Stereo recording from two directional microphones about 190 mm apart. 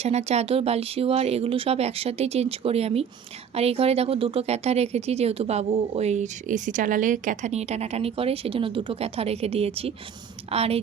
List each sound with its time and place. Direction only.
0.0 s speech: 35° right (ahead or behind)